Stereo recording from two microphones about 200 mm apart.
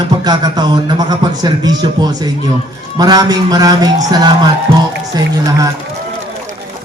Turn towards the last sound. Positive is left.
turn(degrees=-20)  # may be behind; listen again after turning